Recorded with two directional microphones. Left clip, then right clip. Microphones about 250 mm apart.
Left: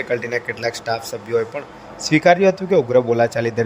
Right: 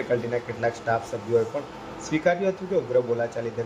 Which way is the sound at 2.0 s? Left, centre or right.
Left.